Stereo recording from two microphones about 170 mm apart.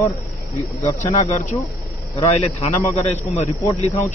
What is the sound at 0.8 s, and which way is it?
A man's voice, 40° left (ahead or behind).